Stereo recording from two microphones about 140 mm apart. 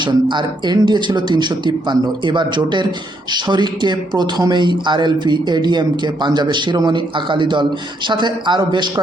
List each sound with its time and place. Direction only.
0.0 s a man's voice: 35° right (ahead or behind)